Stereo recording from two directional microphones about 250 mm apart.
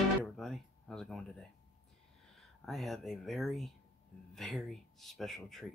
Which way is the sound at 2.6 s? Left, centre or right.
Centre.